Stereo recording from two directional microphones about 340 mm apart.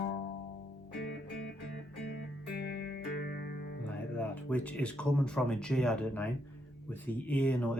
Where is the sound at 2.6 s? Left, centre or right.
Left.